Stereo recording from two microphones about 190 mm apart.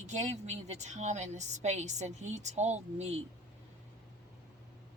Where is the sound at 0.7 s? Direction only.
40° right (ahead or behind).